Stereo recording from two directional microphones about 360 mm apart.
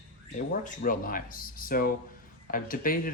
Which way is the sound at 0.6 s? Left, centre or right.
Left.